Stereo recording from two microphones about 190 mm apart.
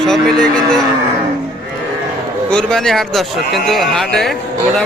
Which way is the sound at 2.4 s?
5° left (ahead or behind).